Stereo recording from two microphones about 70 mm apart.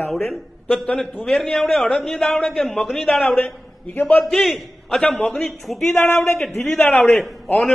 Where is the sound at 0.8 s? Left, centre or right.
Centre.